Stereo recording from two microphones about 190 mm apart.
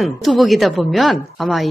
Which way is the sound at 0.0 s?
Centre (ahead or behind).